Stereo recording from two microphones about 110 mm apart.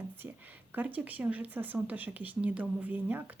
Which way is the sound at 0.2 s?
20° right (ahead or behind).